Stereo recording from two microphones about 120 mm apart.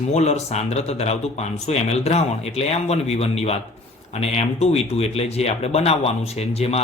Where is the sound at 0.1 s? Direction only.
65° left (ahead or behind).